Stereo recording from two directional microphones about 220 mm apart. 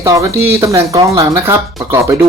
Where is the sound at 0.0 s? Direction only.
15° right (ahead or behind).